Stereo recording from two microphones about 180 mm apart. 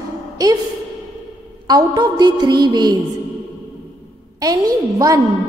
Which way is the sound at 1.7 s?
25° right (ahead or behind).